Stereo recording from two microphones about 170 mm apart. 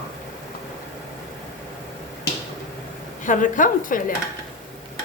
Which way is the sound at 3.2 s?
50° left (ahead or behind).